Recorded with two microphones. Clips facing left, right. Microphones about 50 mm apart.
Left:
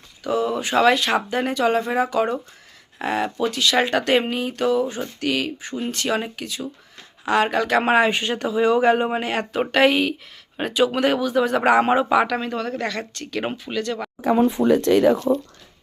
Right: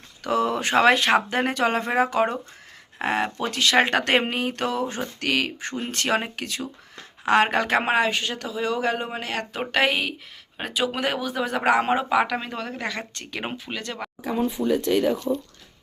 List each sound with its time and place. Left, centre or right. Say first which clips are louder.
0.3 s speech: left 1 dB; right
5.9 s speech: even; right
8.0 s speech: left 4 dB; left
9.5 s speech: left 5 dB; centre; by 13.4 s right
13.4 s speech: left 3 dB; centre
13.7 s speech: left 7 dB; right
14.2 s speech: left 7 dB; left